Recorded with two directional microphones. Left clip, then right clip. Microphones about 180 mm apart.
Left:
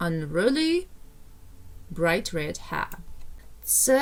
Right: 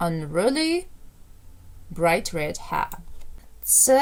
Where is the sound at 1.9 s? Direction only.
5° right (ahead or behind).